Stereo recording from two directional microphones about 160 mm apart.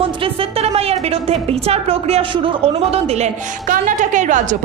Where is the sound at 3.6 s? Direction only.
50° right (ahead or behind).